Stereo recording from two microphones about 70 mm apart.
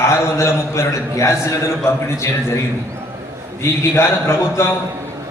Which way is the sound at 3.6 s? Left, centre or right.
Left.